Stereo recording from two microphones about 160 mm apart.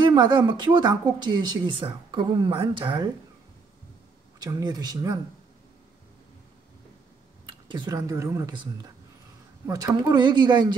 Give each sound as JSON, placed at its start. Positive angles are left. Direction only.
{"t": 0.0, "sound": "speech", "side_deg": -30}
{"t": 4.4, "sound": "speech", "side_deg": -25}
{"t": 7.6, "sound": "speech", "side_deg": -30}
{"t": 9.7, "sound": "speech", "side_deg": -25}